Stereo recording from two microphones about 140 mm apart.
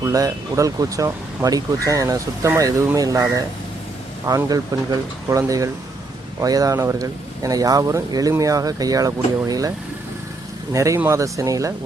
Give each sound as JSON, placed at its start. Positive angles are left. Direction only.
{"t": 0.0, "sound": "speech", "side_deg": -25}